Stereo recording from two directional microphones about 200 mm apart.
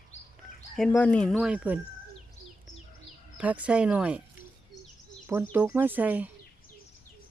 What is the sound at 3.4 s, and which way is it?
Speech, 5° right (ahead or behind).